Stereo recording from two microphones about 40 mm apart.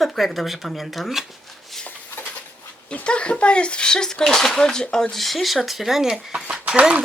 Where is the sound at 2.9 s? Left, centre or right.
Left; by 6.2 s centre.